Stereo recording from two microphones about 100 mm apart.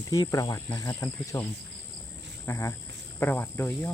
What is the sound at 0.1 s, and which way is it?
Speech, 35° left (ahead or behind).